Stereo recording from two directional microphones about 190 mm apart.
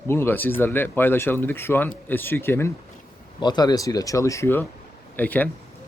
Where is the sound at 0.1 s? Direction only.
10° left (ahead or behind).